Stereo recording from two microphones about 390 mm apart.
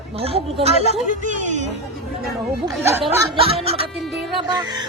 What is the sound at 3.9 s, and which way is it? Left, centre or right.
Speech, centre.